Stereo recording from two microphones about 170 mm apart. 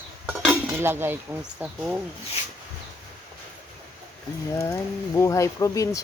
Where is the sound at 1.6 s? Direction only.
5° right (ahead or behind).